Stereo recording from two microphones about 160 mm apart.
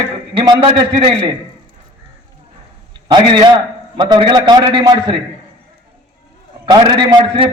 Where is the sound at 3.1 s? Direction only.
30° right (ahead or behind).